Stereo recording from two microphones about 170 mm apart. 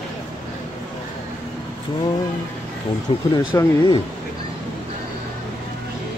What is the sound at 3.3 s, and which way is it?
Speech, 30° left (ahead or behind).